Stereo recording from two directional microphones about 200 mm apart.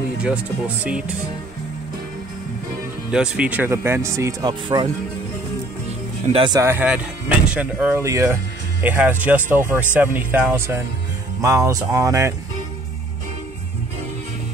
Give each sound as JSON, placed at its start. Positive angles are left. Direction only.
{"t": 0.2, "sound": "speech", "side_deg": -5}
{"t": 3.1, "sound": "speech", "side_deg": -5}
{"t": 6.2, "sound": "speech", "side_deg": -25}
{"t": 6.6, "sound": "speech", "side_deg": -10}